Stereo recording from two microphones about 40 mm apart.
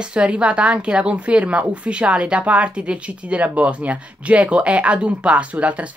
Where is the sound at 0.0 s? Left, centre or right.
Right.